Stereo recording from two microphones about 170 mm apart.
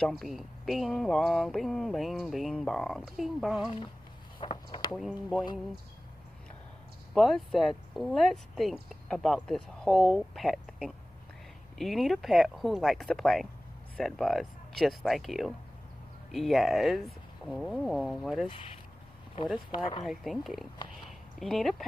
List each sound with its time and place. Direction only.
0.0 s speech: centre (ahead or behind)
4.4 s speech: 30° left (ahead or behind)
4.9 s speech: centre (ahead or behind)
7.2 s speech: centre (ahead or behind)
19.7 s speech: 30° left (ahead or behind)
20.1 s speech: centre (ahead or behind)
21.0 s a sound: centre (ahead or behind)